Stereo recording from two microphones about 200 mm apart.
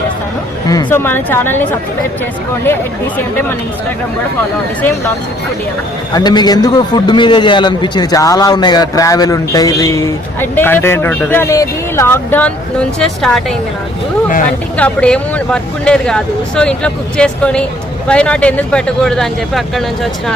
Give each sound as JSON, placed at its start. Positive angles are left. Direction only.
{"t": 0.9, "sound": "a man's voice", "side_deg": 10}
{"t": 4.8, "sound": "a man's voice", "side_deg": 10}
{"t": 6.1, "sound": "a man's voice", "side_deg": 20}
{"t": 14.8, "sound": "speech", "side_deg": 5}